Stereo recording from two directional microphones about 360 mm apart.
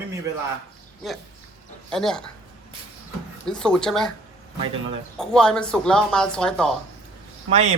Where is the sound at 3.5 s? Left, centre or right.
Centre.